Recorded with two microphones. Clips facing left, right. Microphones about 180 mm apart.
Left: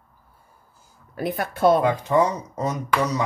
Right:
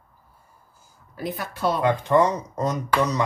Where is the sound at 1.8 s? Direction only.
10° left (ahead or behind).